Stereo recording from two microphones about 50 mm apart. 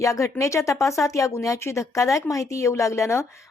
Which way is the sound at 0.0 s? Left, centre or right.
Left.